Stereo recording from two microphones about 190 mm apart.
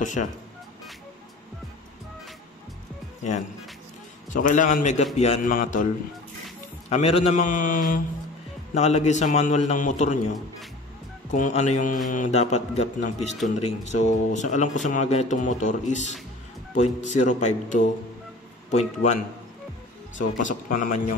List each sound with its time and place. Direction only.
0.0 s speech: 40° left (ahead or behind)
4.3 s speech: 45° left (ahead or behind)
6.9 s speech: 35° left (ahead or behind)
11.3 s speech: 40° left (ahead or behind)